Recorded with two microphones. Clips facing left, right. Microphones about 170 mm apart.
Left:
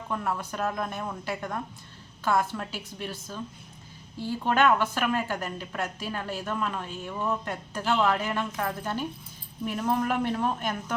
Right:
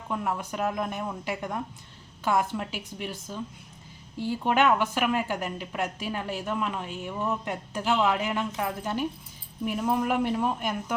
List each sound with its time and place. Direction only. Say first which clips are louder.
0.1 s speech: right 1 dB; 15° right (ahead or behind)